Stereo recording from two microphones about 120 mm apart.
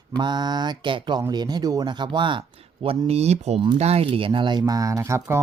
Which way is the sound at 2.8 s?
60° right (ahead or behind).